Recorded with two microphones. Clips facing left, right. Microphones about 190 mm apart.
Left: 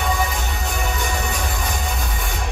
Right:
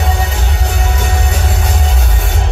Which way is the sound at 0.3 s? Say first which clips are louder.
Right 5 dB; 70° right (ahead or behind).